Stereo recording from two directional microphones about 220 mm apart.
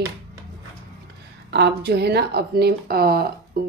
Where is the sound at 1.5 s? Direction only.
50° right (ahead or behind).